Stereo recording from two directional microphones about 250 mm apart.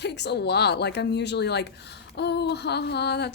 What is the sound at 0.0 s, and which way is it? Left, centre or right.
Speech, left.